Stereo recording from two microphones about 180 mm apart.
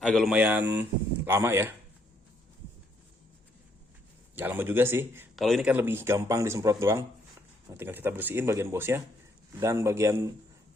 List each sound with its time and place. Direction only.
0.0 s speech: centre (ahead or behind); by 1.7 s 15° right (ahead or behind)
4.4 s speech: 10° right (ahead or behind)
5.4 s speech: centre (ahead or behind); by 10.3 s 15° right (ahead or behind)